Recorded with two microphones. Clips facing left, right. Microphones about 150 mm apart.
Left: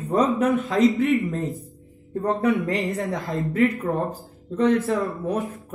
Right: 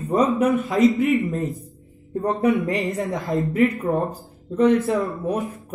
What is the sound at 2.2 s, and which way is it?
Speech, 20° right (ahead or behind).